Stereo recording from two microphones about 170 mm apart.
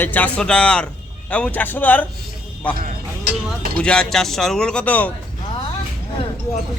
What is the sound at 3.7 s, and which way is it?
Speech, 5° left (ahead or behind).